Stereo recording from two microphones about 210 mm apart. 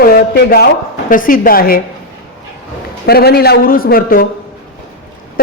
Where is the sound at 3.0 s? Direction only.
50° left (ahead or behind).